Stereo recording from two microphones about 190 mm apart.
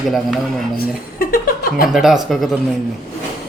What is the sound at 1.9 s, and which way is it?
Speech, centre (ahead or behind).